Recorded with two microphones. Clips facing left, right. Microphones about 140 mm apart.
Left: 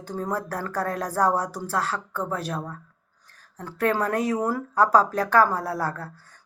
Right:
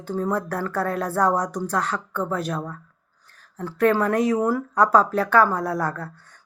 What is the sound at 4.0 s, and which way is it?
Speech, 35° left (ahead or behind).